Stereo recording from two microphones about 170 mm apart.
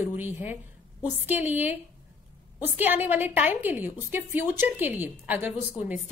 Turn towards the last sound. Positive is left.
turn(degrees=-10)  # may be behind; listen again after turning